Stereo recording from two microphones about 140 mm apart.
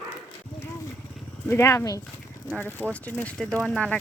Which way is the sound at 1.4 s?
20° left (ahead or behind).